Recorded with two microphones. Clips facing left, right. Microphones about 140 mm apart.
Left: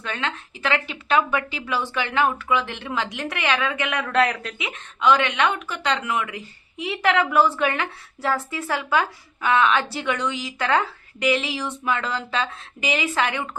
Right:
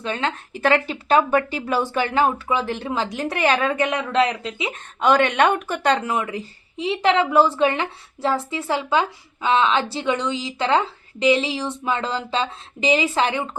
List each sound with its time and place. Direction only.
0.0 s speech: 35° right (ahead or behind)
0.5 s speech: 45° right (ahead or behind)
4.0 s a woman's voice: 20° right (ahead or behind)
5.0 s a woman's voice: 45° right (ahead or behind); by 13.5 s 30° right (ahead or behind)